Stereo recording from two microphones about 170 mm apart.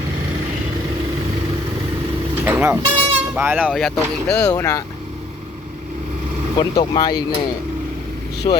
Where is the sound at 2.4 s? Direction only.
10° right (ahead or behind).